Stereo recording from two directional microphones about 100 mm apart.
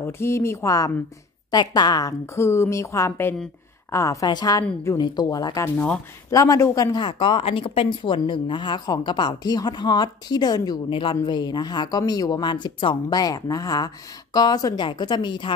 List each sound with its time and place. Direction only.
0.0 s a woman's voice: 25° left (ahead or behind)
7.0 s a woman's voice: 55° left (ahead or behind)
10.9 s speech: 60° left (ahead or behind)
11.2 s a woman's voice: 45° left (ahead or behind)
14.8 s a woman's voice: 50° left (ahead or behind)